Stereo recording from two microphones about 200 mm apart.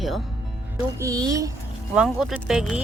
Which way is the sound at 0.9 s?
15° right (ahead or behind).